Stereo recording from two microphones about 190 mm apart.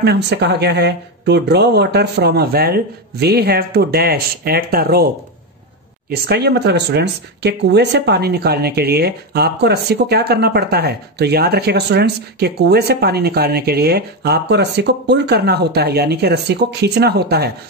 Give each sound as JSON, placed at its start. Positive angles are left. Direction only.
{"t": 0.0, "sound": "speech", "side_deg": -60}
{"t": 6.0, "sound": "speech", "side_deg": -60}